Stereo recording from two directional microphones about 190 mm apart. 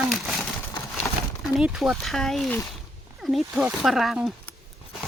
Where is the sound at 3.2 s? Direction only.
Centre (ahead or behind).